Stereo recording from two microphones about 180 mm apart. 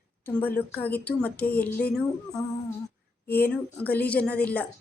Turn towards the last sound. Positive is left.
turn(degrees=10)  # may be behind; listen again after turning